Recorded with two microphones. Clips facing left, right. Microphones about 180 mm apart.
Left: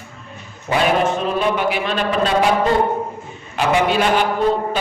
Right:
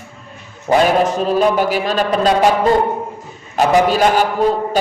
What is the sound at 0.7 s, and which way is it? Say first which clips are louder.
A man's voice: right 4 dB; 40° right (ahead or behind).